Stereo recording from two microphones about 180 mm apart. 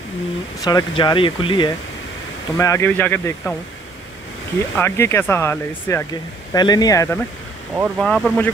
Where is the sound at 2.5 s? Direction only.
15° left (ahead or behind).